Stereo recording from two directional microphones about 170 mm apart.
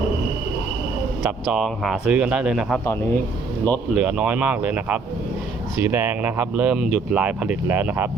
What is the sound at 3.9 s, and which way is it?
Speech, 5° right (ahead or behind).